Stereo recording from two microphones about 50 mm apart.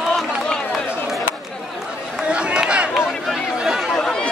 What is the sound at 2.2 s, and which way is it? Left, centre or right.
Run, right.